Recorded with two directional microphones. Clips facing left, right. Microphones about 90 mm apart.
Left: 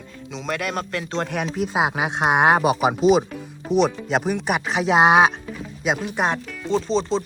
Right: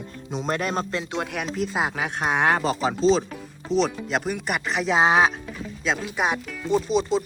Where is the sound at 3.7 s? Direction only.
5° left (ahead or behind).